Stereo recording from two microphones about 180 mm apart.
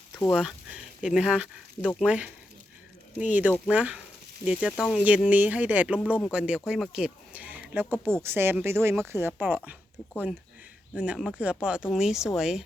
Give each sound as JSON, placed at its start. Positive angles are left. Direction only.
{"t": 0.2, "sound": "speech", "side_deg": 0}
{"t": 10.9, "sound": "speech", "side_deg": -5}